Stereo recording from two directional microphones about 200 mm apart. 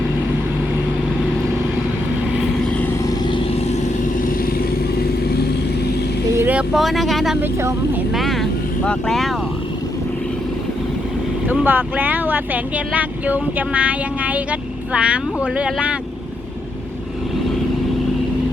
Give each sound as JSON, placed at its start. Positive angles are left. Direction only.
{"t": 3.2, "sound": "vehicle", "side_deg": 25}
{"t": 6.3, "sound": "speech", "side_deg": -10}
{"t": 8.1, "sound": "vehicle", "side_deg": 0}
{"t": 11.4, "sound": "speech", "side_deg": -10}